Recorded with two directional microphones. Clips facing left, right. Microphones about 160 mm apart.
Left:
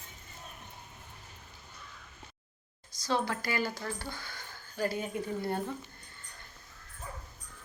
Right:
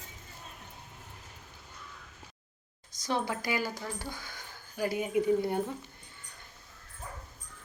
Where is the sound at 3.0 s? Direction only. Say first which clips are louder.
Even; 15° right (ahead or behind).